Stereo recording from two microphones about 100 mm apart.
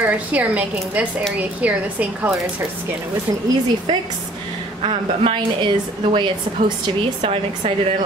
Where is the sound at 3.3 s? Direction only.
60° right (ahead or behind).